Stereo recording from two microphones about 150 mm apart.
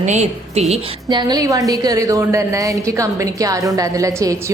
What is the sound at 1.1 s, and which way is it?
A woman's voice, 25° right (ahead or behind).